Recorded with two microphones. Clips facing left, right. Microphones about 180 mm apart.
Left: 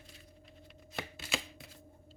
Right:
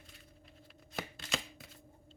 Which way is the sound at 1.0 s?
5° left (ahead or behind).